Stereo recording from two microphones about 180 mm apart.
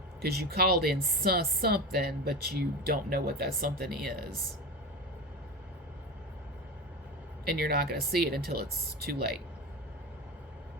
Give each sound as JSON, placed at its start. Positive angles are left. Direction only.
{"t": 0.2, "sound": "speech", "side_deg": -60}
{"t": 7.4, "sound": "speech", "side_deg": -60}